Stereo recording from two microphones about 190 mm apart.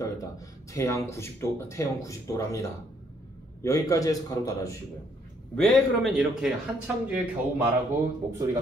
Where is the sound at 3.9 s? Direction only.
20° left (ahead or behind).